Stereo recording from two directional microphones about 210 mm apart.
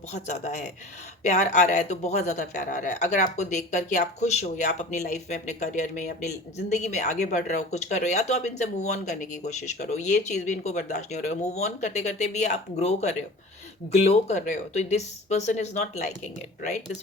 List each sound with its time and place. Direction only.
0.1 s speech: 35° left (ahead or behind)